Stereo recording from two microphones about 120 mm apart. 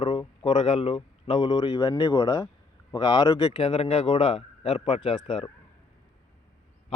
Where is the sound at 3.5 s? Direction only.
55° left (ahead or behind).